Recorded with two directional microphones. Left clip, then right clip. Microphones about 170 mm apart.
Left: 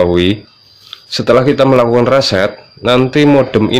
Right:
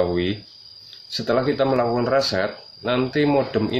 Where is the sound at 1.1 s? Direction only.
55° left (ahead or behind).